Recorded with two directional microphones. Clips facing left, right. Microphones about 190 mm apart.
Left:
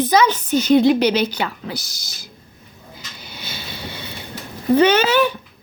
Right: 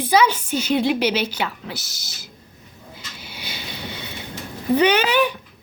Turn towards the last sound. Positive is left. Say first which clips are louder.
# left 3 dB
turn(degrees=-15)  # may be behind; listen again after turning